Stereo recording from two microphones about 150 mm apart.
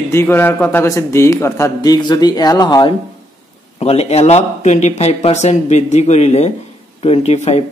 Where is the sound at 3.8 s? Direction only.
45° left (ahead or behind).